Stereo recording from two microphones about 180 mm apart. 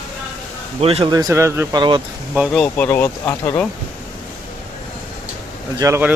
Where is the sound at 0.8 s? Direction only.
35° right (ahead or behind).